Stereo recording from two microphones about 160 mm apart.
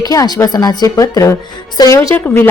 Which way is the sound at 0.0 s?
25° left (ahead or behind).